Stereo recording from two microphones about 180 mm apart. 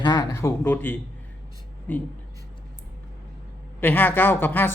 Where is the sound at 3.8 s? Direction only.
10° left (ahead or behind).